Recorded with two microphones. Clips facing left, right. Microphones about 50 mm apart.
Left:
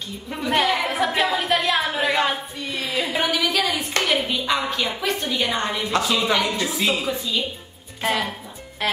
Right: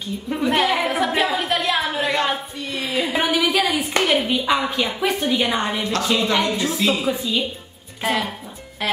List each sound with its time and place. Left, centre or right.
0.3 s a woman's voice: centre
7.1 s a woman's voice: centre
8.0 s music: centre